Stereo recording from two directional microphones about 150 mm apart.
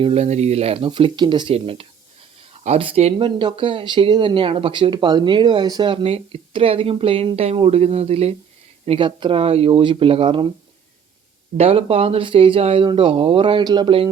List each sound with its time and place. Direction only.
0.0 s speech: 45° right (ahead or behind)
11.5 s speech: 40° right (ahead or behind)